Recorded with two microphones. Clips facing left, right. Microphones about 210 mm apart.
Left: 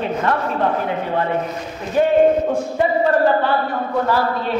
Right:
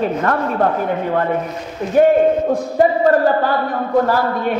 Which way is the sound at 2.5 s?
40° right (ahead or behind).